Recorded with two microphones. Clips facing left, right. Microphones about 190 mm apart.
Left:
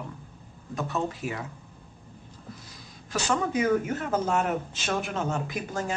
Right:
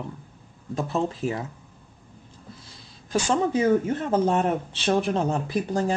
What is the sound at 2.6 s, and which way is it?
Speech, 30° right (ahead or behind).